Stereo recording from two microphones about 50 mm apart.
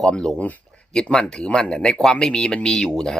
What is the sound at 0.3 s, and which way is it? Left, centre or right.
Speech, left.